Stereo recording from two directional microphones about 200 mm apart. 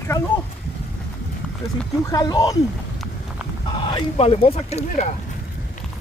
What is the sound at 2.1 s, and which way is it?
Speech, 20° left (ahead or behind).